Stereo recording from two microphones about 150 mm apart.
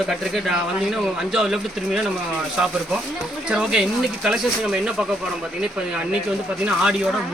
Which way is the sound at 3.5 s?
5° right (ahead or behind).